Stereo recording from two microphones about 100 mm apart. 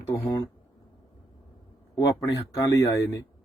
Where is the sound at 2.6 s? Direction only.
35° left (ahead or behind).